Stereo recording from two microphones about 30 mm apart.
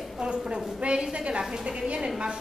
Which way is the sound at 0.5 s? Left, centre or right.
Right.